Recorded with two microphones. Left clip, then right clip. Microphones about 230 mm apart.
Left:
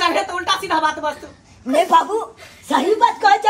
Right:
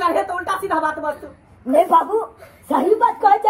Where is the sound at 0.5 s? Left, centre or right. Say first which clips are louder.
Left 3 dB; left.